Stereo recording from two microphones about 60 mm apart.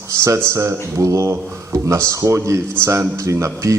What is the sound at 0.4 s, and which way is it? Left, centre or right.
Speech, right.